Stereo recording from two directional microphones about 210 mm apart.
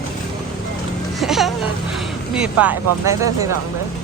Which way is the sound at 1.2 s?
Centre (ahead or behind).